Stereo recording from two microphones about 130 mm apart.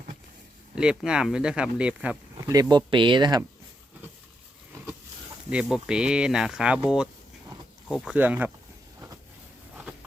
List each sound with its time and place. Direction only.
0.8 s speech: 5° right (ahead or behind)
2.5 s speech: 30° right (ahead or behind)
5.5 s speech: 5° right (ahead or behind)